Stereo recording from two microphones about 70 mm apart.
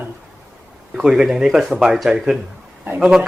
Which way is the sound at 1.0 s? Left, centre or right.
Centre.